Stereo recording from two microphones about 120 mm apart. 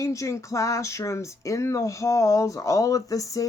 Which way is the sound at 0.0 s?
25° left (ahead or behind).